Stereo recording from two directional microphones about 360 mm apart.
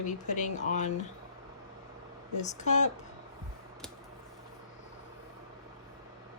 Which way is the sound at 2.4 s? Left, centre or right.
Centre.